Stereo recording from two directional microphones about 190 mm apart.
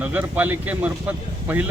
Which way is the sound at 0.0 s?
10° right (ahead or behind).